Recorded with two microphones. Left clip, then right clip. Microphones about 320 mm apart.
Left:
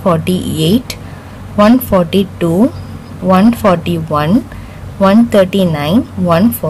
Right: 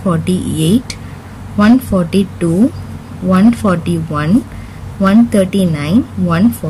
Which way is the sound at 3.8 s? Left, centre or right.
Centre.